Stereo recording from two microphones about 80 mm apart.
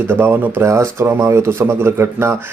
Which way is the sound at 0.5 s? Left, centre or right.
Right.